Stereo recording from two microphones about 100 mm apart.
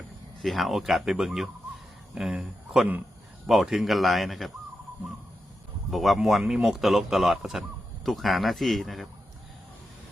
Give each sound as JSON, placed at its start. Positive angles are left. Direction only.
{"t": 0.4, "sound": "speech", "side_deg": 0}
{"t": 5.9, "sound": "speech", "side_deg": 0}